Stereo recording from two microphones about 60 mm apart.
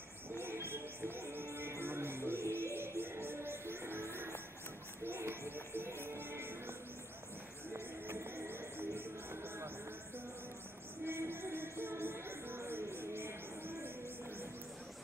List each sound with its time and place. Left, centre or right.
0.4 s music: right
7.7 s music: right
11.1 s music: right